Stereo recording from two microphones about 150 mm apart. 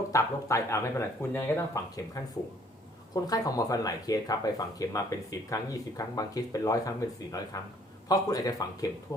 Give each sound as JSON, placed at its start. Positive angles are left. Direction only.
{"t": 0.1, "sound": "speech", "side_deg": 20}
{"t": 3.2, "sound": "speech", "side_deg": 25}